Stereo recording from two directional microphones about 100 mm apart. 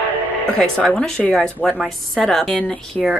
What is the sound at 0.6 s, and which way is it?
A woman's voice, 10° left (ahead or behind).